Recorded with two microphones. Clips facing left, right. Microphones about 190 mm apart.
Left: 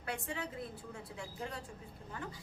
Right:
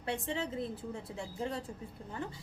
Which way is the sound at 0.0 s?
25° right (ahead or behind).